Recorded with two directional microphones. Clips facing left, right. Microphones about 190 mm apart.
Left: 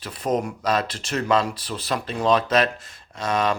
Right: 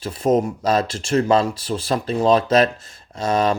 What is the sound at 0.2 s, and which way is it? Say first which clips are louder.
Speech: right 6 dB; 25° right (ahead or behind).